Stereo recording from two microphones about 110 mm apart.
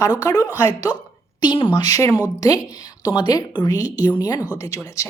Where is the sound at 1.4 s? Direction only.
45° left (ahead or behind).